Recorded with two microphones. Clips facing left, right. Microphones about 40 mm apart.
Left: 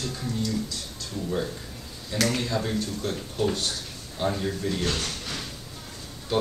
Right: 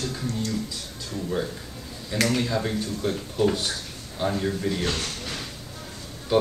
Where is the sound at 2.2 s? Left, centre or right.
Centre.